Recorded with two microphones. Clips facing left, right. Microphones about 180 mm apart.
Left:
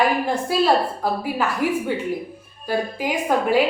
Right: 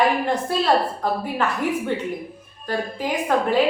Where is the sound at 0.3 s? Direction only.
10° left (ahead or behind).